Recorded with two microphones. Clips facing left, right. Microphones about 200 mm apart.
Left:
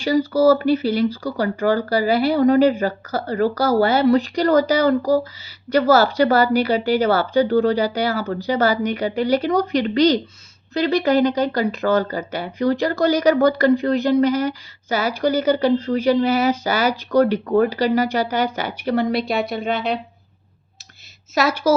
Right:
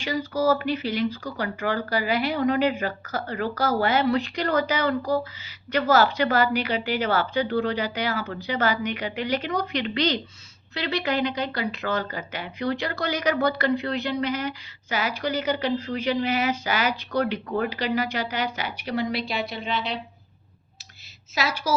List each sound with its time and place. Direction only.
0.0 s speech: 40° left (ahead or behind)